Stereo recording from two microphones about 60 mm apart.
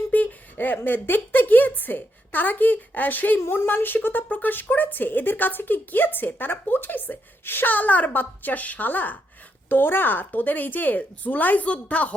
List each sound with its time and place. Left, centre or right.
0.1 s a sound: left
0.9 s a woman's voice: left
3.4 s a woman's voice: left